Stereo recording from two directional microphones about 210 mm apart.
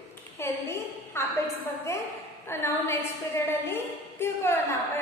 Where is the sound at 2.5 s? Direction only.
10° left (ahead or behind).